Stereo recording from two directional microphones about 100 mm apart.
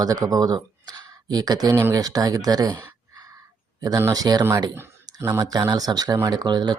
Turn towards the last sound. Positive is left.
turn(degrees=-45)  # may be behind; listen again after turning